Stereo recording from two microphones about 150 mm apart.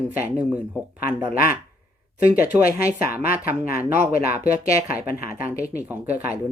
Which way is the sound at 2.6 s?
80° left.